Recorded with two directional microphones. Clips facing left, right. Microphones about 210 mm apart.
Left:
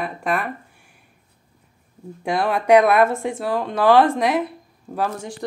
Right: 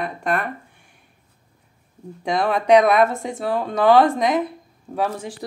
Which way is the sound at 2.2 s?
5° left (ahead or behind).